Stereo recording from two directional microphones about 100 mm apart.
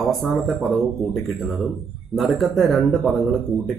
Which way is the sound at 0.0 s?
Centre (ahead or behind).